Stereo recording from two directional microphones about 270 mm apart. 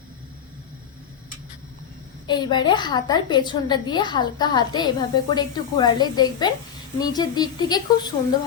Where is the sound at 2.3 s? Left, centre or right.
Centre.